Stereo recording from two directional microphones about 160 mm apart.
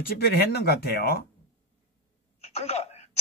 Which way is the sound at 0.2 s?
80° left.